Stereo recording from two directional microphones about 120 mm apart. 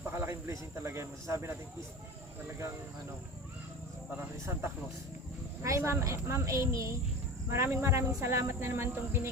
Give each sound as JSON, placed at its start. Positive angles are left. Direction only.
{"t": 0.1, "sound": "a man's voice", "side_deg": -20}
{"t": 5.6, "sound": "speech", "side_deg": -25}